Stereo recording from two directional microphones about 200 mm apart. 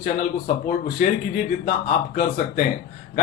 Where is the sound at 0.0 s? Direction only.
40° left (ahead or behind).